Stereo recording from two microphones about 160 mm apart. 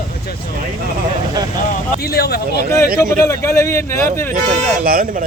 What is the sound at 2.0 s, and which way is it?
Speech, 80° left.